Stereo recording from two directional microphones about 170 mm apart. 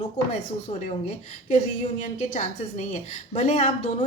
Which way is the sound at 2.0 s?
45° left (ahead or behind).